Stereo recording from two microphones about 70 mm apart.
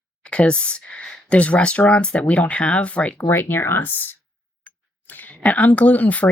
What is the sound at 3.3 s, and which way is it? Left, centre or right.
Speech, left.